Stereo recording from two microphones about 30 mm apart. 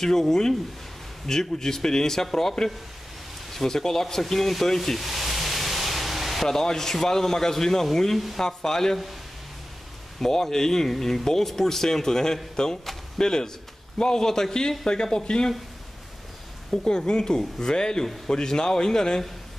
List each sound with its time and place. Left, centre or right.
0.0 s speech: centre
3.5 s speech: centre
4.9 s pink noise: centre
6.4 s speech: centre
10.2 s speech: centre
16.8 s speech: left